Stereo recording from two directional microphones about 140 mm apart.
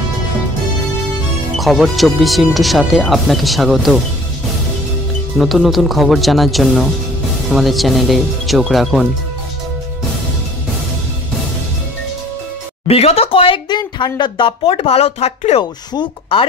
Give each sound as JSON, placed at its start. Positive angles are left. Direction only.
{"t": 1.6, "sound": "speech", "side_deg": 0}
{"t": 5.4, "sound": "speech", "side_deg": 0}
{"t": 12.8, "sound": "speech", "side_deg": 45}
{"t": 15.9, "sound": "speech", "side_deg": 35}